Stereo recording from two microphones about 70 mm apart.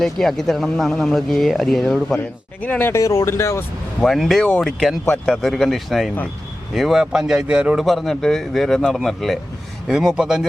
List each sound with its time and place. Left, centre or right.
0.0 s speech: centre
2.6 s speech: left
2.9 s speech: left
4.0 s speech: centre
4.4 s speech: left
5.2 s speech: centre
7.8 s speech: centre